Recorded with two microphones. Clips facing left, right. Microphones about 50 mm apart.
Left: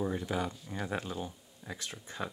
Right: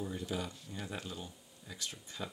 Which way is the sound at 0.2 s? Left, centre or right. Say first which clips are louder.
Left 5 dB; left.